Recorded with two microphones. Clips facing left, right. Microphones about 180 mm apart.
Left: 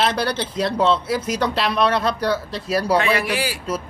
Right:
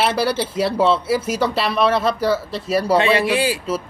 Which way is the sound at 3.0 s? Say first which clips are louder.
Right 4 dB; 25° right (ahead or behind).